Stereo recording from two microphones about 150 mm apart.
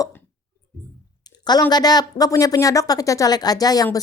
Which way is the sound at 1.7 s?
25° left (ahead or behind).